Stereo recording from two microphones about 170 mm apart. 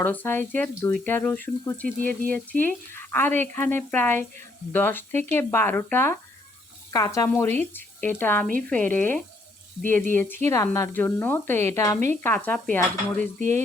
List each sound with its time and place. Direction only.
0.0 s frying: 10° left (ahead or behind)
7.7 s speech: 10° left (ahead or behind)
8.4 s speech: 55° right (ahead or behind)
8.7 s frying: 10° left (ahead or behind)